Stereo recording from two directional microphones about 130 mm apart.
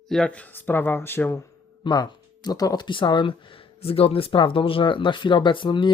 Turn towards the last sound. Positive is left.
turn(degrees=35)  # may be behind; listen again after turning